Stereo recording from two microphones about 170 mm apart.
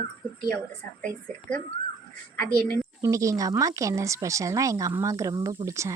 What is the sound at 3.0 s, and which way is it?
Speech, 20° right (ahead or behind).